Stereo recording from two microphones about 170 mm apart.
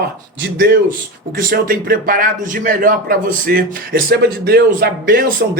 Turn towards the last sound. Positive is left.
turn(degrees=-60)  # may be behind; listen again after turning